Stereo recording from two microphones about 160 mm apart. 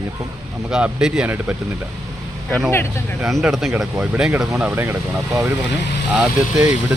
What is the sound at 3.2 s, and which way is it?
Speech, 5° right (ahead or behind).